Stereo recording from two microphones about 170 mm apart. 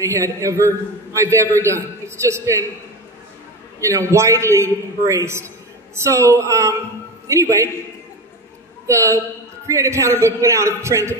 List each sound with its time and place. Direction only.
0.0 s a man's voice: 20° right (ahead or behind)
3.8 s a man's voice: 15° right (ahead or behind)
8.8 s a man's voice: 15° right (ahead or behind)